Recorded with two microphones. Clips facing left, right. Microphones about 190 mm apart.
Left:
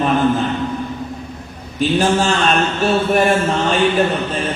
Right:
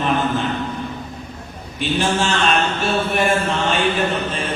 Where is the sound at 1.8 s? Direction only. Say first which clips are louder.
Left 4 dB; 40° left (ahead or behind).